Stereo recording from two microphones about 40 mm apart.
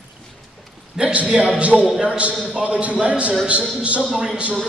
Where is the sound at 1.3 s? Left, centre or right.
Centre.